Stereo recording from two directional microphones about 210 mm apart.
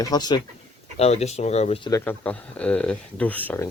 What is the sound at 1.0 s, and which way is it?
Speech, 30° left (ahead or behind).